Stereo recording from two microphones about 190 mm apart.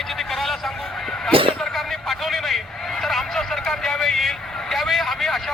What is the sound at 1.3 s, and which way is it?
Vehicle, 30° right (ahead or behind).